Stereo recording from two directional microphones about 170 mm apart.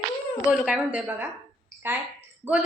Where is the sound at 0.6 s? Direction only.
5° right (ahead or behind).